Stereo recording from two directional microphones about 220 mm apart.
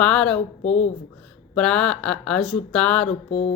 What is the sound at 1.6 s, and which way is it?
Speech, 5° left (ahead or behind).